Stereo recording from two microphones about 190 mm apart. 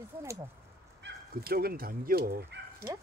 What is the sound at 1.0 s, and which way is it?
Speech, 55° right (ahead or behind).